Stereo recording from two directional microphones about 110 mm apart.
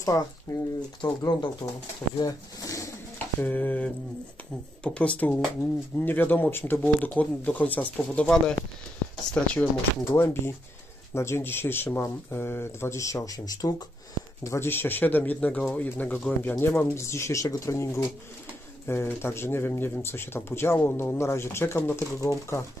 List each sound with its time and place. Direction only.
0.0 s speech: 35° left (ahead or behind)
3.3 s speech: 15° left (ahead or behind)
10.0 s speech: 20° left (ahead or behind)
14.4 s speech: 25° left (ahead or behind)